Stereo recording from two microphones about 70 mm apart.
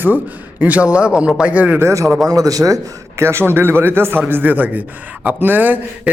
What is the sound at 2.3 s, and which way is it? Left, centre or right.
Speech, right.